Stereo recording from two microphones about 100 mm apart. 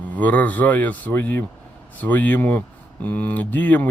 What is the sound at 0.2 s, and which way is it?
Speech, 15° left (ahead or behind).